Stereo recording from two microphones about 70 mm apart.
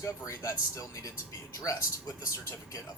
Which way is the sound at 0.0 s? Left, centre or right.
Left.